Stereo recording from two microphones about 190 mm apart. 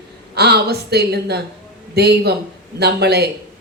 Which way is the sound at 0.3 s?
55° right (ahead or behind).